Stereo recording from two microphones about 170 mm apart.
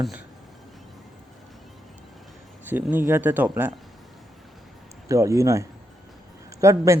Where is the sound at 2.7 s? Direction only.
10° right (ahead or behind).